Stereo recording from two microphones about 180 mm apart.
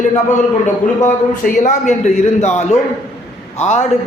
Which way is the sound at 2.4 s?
40° left (ahead or behind).